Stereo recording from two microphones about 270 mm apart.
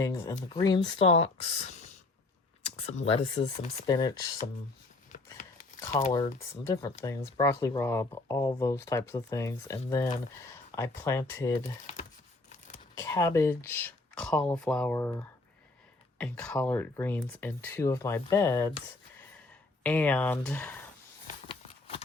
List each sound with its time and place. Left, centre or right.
0.0 s speech: centre
2.6 s speech: left
6.0 s speech: centre
12.5 s a sound: left
13.0 s speech: centre
19.8 s speech: centre
21.4 s a sound: centre